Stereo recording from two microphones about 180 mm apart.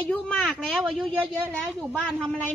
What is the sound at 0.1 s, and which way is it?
A woman's voice, 5° left (ahead or behind).